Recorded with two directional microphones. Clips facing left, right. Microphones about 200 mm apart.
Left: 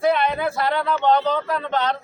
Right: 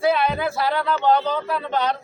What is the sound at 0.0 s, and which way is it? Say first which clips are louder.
A man's voice: even; 5° right (ahead or behind).